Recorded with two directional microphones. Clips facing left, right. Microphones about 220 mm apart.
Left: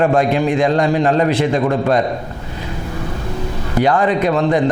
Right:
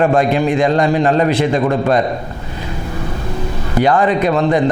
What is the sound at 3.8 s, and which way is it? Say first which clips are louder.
Speech: right 1 dB; 20° right (ahead or behind).